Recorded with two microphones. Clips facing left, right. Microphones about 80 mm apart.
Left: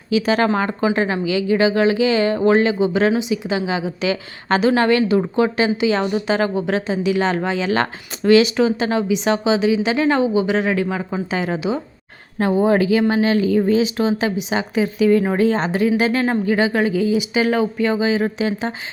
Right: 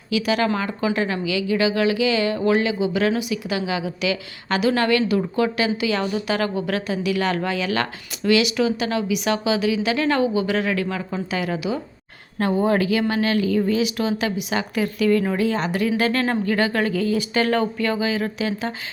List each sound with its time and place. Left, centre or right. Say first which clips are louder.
0.1 s a woman's voice: left 4 dB; left
15.3 s a woman's voice: left 4 dB; left